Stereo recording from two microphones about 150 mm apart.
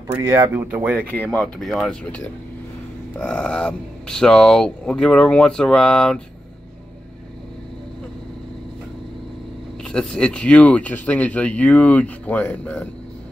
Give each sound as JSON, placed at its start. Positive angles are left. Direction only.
{"t": 0.1, "sound": "speech", "side_deg": -20}
{"t": 1.1, "sound": "speech", "side_deg": 10}
{"t": 9.8, "sound": "speech", "side_deg": 5}